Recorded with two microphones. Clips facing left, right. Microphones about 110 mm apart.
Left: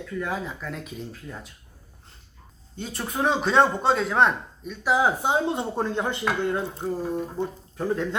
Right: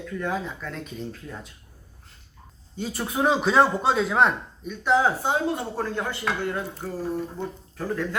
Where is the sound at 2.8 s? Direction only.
5° right (ahead or behind).